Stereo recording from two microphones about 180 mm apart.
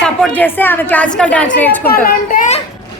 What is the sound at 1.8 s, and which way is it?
Speech, 55° left (ahead or behind).